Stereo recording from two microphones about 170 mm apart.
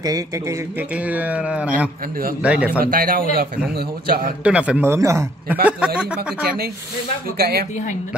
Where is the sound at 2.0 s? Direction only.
60° right (ahead or behind).